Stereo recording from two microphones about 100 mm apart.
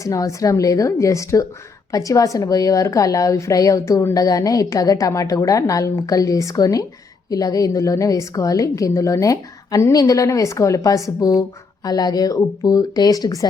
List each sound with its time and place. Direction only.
0.0 s a woman's voice: 35° left (ahead or behind)